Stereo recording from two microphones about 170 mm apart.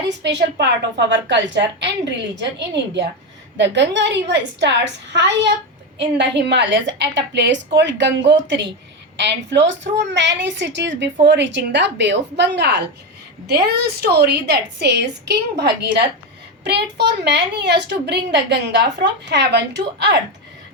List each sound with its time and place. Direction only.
0.2 s a woman's voice: 90° right
13.5 s a woman's voice: 70° right (ahead or behind); by 20.1 s 90° right